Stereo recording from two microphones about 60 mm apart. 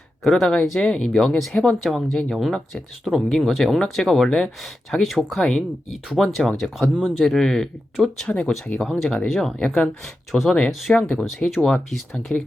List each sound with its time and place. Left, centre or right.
0.3 s speech: centre
7.3 s speech: centre
8.4 s speech: centre
8.8 s speech: centre